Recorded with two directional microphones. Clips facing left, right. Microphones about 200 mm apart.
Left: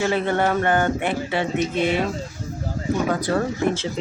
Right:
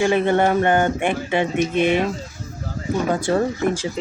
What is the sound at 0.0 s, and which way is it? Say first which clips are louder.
Speech: right 4 dB; 15° right (ahead or behind).